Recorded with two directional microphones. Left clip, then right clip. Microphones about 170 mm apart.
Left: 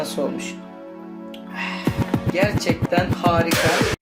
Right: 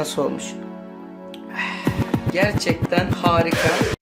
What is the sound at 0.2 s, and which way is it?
Speech, 35° right (ahead or behind).